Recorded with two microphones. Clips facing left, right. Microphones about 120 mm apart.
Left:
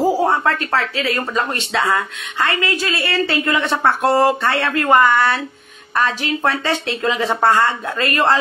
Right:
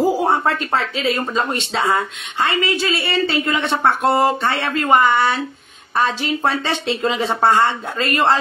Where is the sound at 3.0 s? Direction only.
55° left (ahead or behind).